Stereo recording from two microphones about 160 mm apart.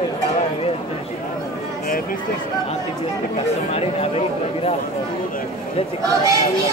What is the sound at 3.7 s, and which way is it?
Speech, 40° left (ahead or behind).